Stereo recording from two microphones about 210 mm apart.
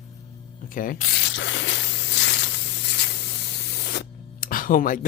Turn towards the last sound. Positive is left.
turn(degrees=40)  # may be behind; listen again after turning